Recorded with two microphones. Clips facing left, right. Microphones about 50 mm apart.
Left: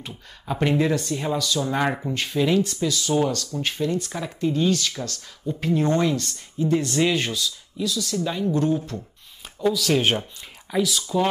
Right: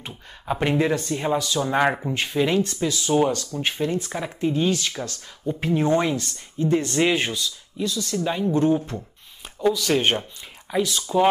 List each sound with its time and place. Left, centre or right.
0.0 s speech: centre
6.7 s speech: centre
7.0 s speech: centre
7.8 s speech: right
9.4 s speech: centre